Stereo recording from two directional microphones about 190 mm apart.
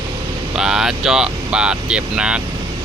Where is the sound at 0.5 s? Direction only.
5° right (ahead or behind).